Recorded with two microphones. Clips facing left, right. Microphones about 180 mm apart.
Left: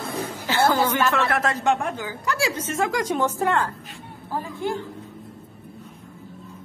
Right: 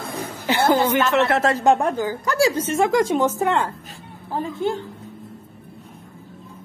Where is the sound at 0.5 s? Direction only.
20° right (ahead or behind).